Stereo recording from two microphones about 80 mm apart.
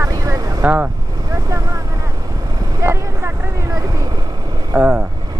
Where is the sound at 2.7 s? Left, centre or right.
Right.